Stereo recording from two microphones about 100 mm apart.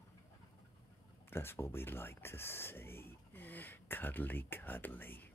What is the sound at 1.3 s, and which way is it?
Speech, 25° left (ahead or behind).